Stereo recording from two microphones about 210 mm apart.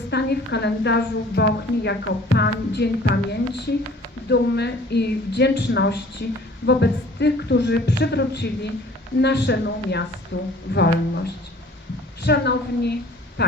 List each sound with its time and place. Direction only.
0.1 s a woman's voice: 55° left (ahead or behind)